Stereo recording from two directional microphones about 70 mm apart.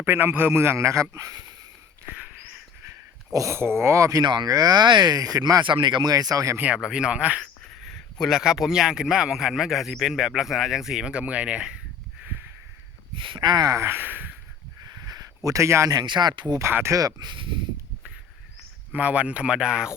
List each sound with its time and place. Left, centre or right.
0.0 s a man's voice: right
2.0 s a sound: right
3.3 s speech: right
4.2 s speech: right
6.7 s speech: centre
7.4 s speech: centre
13.4 s speech: right
13.7 s speech: right
15.0 s a sound: right
15.4 s speech: right
15.9 s speech: right
16.9 s speech: right
18.9 s speech: centre